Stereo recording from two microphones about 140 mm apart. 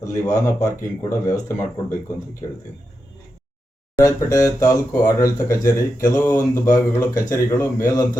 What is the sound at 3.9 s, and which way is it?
Speech, 25° left (ahead or behind).